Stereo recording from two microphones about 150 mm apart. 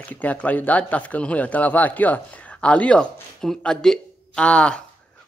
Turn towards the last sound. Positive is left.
turn(degrees=10)  # may be behind; listen again after turning